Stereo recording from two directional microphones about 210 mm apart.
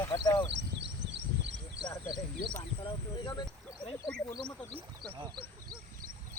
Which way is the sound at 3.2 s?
20° left (ahead or behind).